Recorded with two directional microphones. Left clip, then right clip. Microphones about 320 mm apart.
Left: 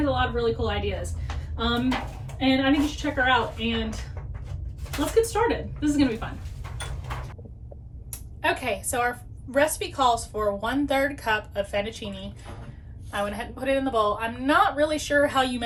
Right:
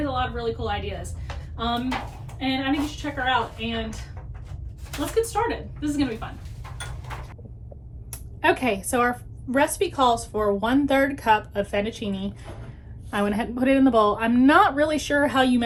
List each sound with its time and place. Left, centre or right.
0.0 s a woman's voice: centre
5.2 s a woman's voice: centre
8.1 s a woman's voice: right
12.3 s a woman's voice: centre
13.3 s a woman's voice: right